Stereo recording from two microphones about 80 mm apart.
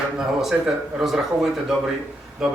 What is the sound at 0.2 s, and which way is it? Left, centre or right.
Speech, centre.